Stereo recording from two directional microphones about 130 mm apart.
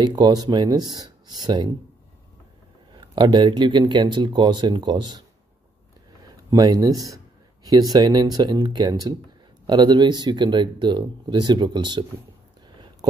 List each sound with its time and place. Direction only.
0.0 s speech: 30° right (ahead or behind)
2.9 s speech: 35° right (ahead or behind)
6.2 s speech: 30° right (ahead or behind)